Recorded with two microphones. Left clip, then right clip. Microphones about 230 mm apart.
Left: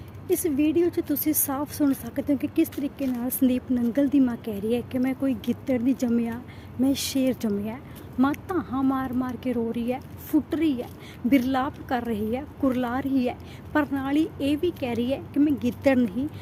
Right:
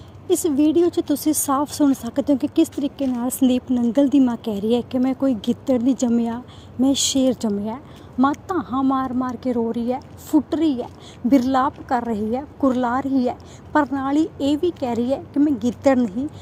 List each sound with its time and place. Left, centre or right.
0.3 s speech: right